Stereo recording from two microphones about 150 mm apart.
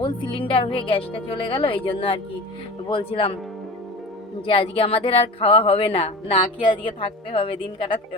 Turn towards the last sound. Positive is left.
turn(degrees=35)  # may be behind; listen again after turning